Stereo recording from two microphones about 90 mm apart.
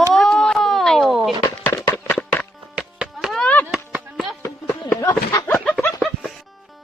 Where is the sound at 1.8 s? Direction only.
30° left (ahead or behind).